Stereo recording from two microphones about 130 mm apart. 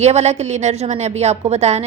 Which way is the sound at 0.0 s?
55° right (ahead or behind).